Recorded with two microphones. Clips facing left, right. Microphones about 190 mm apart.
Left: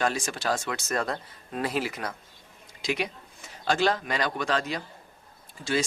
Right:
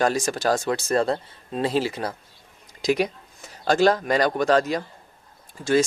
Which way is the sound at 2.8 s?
40° right (ahead or behind).